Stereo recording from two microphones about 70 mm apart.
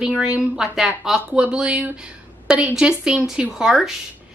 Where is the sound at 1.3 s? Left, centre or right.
Centre.